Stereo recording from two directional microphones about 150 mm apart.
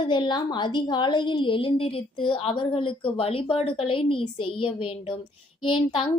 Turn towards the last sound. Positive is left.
turn(degrees=35)  # may be behind; listen again after turning